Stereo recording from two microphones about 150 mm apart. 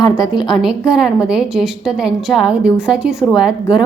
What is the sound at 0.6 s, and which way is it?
A woman's voice, 5° right (ahead or behind).